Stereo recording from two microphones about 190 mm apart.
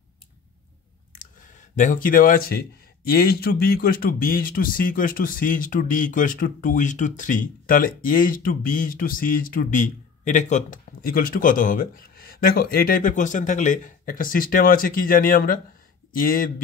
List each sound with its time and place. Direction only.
1.1 s speech: 40° left (ahead or behind)